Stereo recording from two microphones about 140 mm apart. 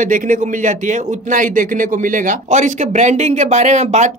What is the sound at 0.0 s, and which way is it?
Speech, 70° right (ahead or behind).